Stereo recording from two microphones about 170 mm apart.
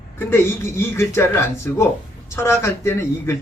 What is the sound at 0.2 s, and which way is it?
A man's voice, 15° left (ahead or behind).